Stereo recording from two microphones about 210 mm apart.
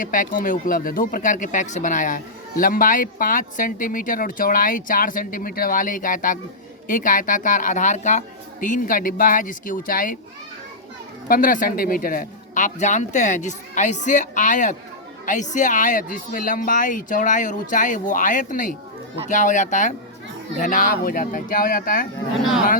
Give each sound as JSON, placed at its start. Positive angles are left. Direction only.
{"t": 0.0, "sound": "speech", "side_deg": 40}
{"t": 11.3, "sound": "speech", "side_deg": 40}
{"t": 22.4, "sound": "speech", "side_deg": 0}